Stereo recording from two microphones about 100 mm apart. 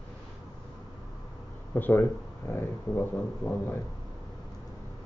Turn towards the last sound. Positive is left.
turn(degrees=15)  # may be behind; listen again after turning